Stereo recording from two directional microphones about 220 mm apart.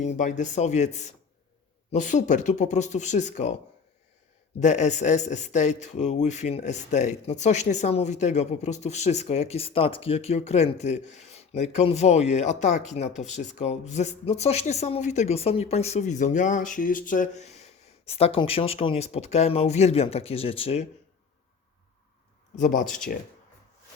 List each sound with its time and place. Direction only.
0.0 s a man's voice: 35° left (ahead or behind)
4.6 s a man's voice: 30° left (ahead or behind)
22.5 s a man's voice: 35° left (ahead or behind)